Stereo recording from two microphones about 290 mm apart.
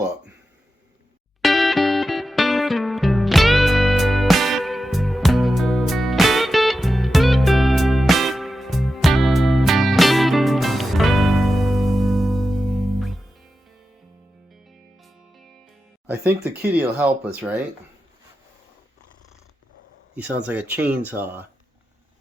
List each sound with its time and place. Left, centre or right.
1.4 s music: centre
16.0 s speech: centre
20.1 s speech: centre